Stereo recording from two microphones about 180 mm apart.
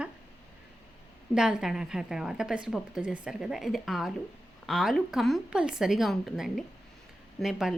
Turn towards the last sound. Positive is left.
turn(degrees=0)  # may be behind; listen again after turning